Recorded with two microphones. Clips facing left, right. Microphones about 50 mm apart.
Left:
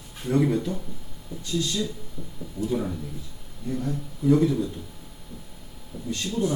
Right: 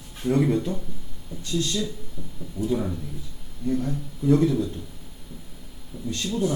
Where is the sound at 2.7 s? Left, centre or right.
Centre.